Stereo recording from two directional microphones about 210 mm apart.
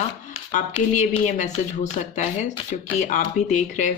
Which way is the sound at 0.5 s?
35° left (ahead or behind).